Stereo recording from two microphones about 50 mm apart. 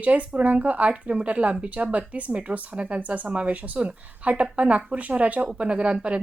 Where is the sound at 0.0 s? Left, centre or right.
Right.